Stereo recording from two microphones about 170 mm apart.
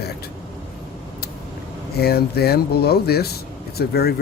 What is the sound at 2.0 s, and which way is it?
Speech, 70° left (ahead or behind).